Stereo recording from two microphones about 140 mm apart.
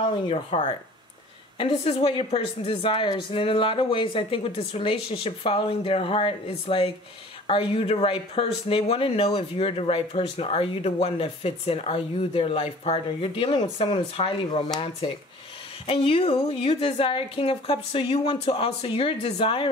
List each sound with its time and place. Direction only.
0.0 s speech: 45° left (ahead or behind)
15.9 s speech: 40° left (ahead or behind)